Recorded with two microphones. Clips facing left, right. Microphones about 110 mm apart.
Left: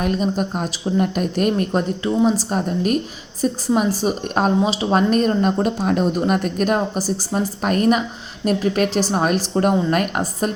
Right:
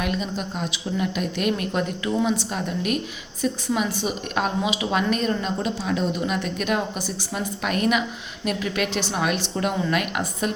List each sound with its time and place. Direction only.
0.0 s a woman's voice: 40° left (ahead or behind)